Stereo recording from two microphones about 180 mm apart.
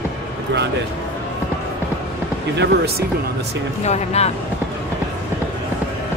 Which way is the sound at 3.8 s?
40° left (ahead or behind).